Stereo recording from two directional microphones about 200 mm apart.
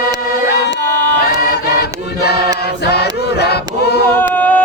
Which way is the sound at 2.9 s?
55° left (ahead or behind).